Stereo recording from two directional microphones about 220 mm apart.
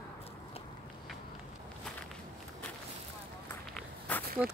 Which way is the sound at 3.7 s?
10° left (ahead or behind).